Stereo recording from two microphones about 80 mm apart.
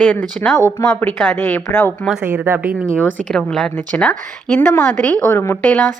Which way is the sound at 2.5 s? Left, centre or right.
Right.